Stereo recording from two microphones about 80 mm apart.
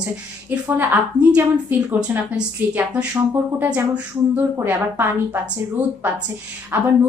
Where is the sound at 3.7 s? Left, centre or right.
Centre.